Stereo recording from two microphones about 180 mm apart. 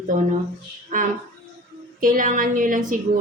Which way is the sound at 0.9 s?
50° right (ahead or behind).